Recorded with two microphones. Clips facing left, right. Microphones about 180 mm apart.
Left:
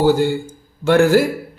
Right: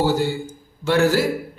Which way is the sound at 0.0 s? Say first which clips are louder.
Left 5 dB; 55° left (ahead or behind).